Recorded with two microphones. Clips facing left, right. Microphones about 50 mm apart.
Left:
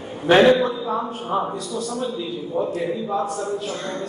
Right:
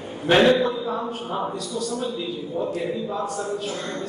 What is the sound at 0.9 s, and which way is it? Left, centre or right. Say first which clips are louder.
A man's voice: left 4 dB; left.